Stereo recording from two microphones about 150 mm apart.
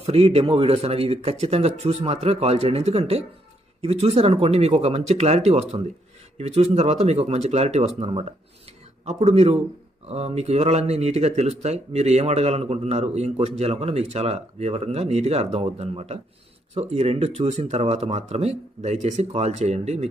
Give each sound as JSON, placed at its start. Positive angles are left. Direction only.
{"t": 0.0, "sound": "speech", "side_deg": -45}